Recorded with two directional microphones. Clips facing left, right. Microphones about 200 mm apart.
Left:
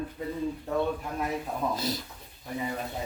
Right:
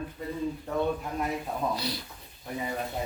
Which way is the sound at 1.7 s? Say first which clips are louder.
Left 2 dB; 45° left (ahead or behind).